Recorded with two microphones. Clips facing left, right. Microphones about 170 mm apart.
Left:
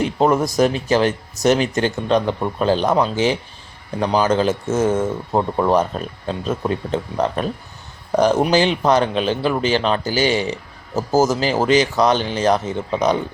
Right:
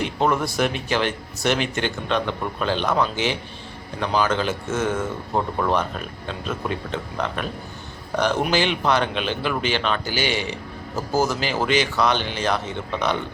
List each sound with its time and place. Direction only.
0.0 s speech: 40° left (ahead or behind)